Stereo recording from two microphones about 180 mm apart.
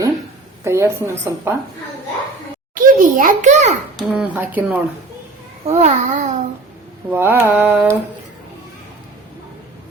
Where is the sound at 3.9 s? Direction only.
5° right (ahead or behind).